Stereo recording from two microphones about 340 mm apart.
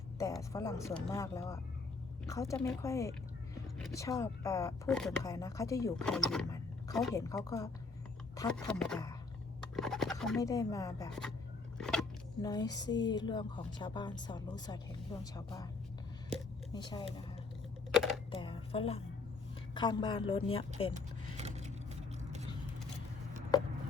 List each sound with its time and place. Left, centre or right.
0.2 s speech: centre
11.8 s a sound: centre
12.5 s speech: centre
16.7 s speech: centre
18.3 s speech: centre
20.9 s vehicle: centre